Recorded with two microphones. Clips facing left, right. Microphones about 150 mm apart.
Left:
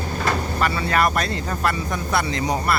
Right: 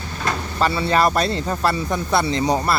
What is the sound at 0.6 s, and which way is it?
Speech, 30° right (ahead or behind).